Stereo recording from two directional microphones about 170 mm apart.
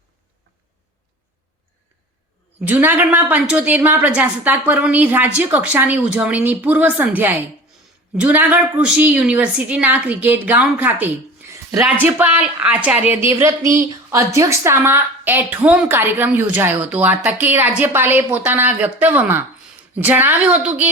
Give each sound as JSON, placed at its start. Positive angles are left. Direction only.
{"t": 2.6, "sound": "a woman's voice", "side_deg": -10}
{"t": 11.4, "sound": "a sound", "side_deg": -15}
{"t": 12.0, "sound": "a woman's voice", "side_deg": -10}